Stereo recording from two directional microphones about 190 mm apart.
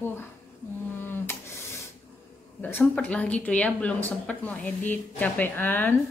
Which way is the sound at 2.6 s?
10° left (ahead or behind).